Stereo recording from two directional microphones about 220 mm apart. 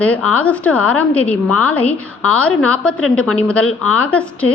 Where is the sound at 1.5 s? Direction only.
90° left.